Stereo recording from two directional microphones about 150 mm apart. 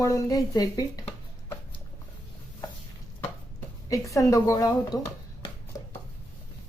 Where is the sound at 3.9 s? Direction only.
20° left (ahead or behind).